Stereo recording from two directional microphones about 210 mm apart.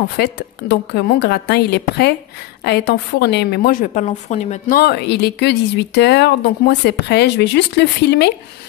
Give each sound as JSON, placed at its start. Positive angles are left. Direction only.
{"t": 0.2, "sound": "a woman's voice", "side_deg": 55}